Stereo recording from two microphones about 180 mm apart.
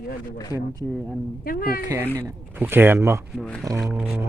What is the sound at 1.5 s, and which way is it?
Speech, 55° left (ahead or behind).